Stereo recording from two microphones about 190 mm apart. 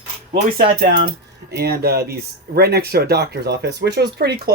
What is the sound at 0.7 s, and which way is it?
Speech, 50° right (ahead or behind).